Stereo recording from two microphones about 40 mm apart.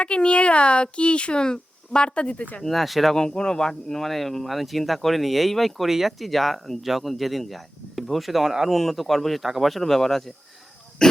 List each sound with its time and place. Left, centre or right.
0.0 s speech: left
2.6 s speech: centre
3.2 s speech: centre
11.0 s cough: centre